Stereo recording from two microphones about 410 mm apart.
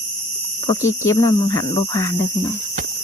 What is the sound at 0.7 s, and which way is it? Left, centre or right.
Speech, centre.